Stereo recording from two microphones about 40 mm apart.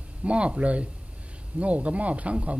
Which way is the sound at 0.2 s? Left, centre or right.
Right.